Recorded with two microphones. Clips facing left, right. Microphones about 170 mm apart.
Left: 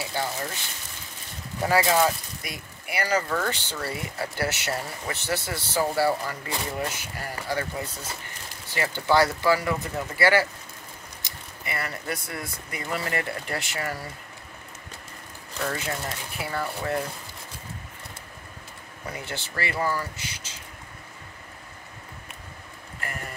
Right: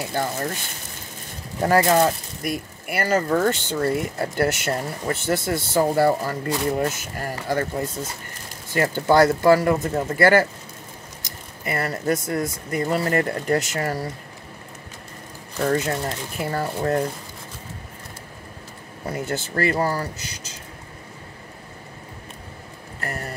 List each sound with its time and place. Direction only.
0.0 s speech: 50° right (ahead or behind)
1.6 s speech: 50° right (ahead or behind)
11.6 s speech: 45° right (ahead or behind)
16.3 s speech: 40° right (ahead or behind)
19.0 s speech: 45° right (ahead or behind)
22.9 s speech: 40° right (ahead or behind)